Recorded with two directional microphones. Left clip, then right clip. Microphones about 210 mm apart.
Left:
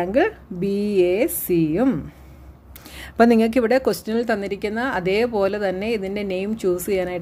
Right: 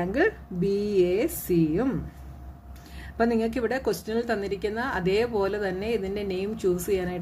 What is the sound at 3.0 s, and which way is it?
A woman's voice, 45° left (ahead or behind).